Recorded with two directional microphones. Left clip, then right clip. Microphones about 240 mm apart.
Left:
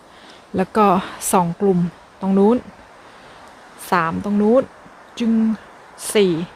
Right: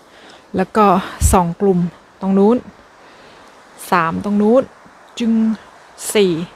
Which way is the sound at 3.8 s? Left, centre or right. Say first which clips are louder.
Right 3 dB; centre.